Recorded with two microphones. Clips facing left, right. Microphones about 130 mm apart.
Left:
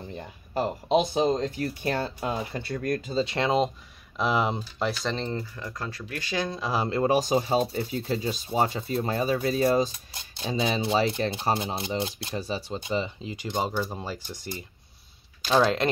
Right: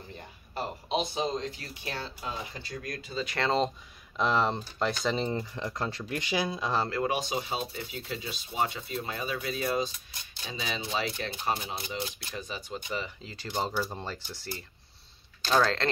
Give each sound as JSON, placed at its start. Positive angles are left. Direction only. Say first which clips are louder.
{"t": 1.1, "sound": "speech", "louder": "left 7 dB", "side_deg": 45}
{"t": 3.1, "sound": "speech", "louder": "left 8 dB", "side_deg": 30}
{"t": 3.3, "sound": "speech", "louder": "left 1 dB", "side_deg": 10}
{"t": 5.0, "sound": "speech", "louder": "right 1 dB", "side_deg": -10}
{"t": 6.6, "sound": "speech", "louder": "left 2 dB", "side_deg": 10}
{"t": 6.9, "sound": "speech", "louder": "left 7 dB", "side_deg": 35}